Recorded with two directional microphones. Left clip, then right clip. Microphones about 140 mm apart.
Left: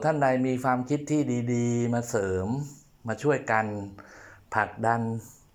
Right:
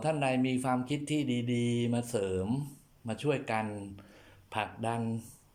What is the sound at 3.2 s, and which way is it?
Speech, 30° right (ahead or behind).